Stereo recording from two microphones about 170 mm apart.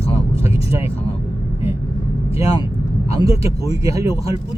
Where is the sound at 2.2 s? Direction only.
15° right (ahead or behind).